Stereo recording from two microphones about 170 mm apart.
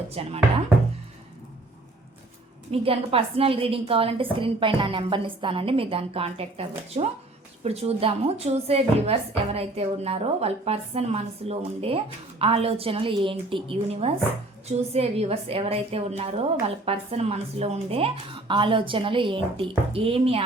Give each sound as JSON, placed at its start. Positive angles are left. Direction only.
{"t": 0.1, "sound": "a woman's voice", "side_deg": -35}
{"t": 2.8, "sound": "a woman's voice", "side_deg": -35}